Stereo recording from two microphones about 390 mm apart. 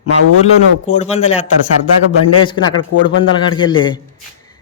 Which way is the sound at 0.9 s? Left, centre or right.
Centre.